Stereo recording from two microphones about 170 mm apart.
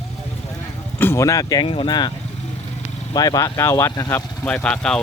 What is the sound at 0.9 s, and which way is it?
Speech, 15° left (ahead or behind).